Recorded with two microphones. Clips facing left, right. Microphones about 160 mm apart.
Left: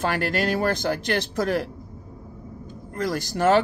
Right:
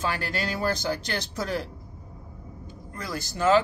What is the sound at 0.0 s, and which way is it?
Speech, 60° left (ahead or behind).